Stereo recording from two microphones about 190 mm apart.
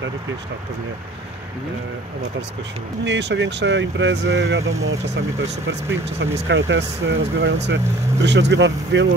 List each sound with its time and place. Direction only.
3.1 s speech: 65° right (ahead or behind)
6.1 s speech: 75° right (ahead or behind)